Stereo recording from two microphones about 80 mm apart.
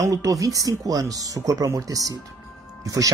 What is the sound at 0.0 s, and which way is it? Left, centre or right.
Speech, right.